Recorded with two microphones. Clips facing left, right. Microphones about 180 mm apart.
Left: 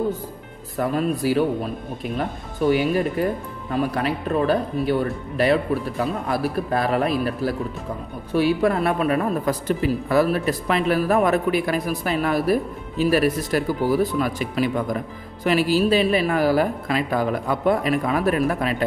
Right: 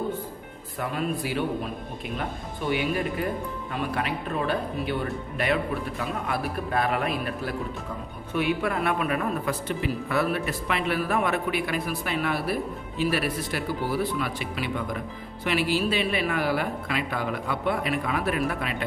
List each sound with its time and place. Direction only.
0.7 s a woman's voice: 40° left (ahead or behind)